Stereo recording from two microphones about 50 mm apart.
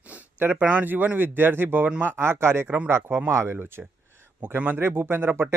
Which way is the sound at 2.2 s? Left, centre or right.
Right.